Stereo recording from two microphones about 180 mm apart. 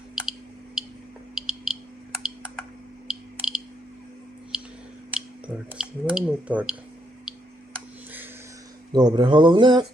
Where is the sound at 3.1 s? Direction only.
5° right (ahead or behind).